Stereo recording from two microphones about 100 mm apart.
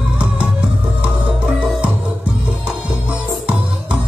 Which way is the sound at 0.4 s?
10° right (ahead or behind).